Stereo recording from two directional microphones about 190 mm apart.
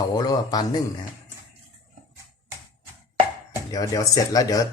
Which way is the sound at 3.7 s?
20° left (ahead or behind).